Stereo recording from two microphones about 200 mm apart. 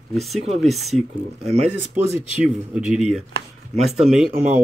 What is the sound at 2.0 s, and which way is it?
Speech, 10° right (ahead or behind).